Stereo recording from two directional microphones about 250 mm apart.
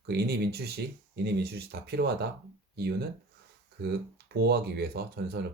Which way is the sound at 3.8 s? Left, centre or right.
Right.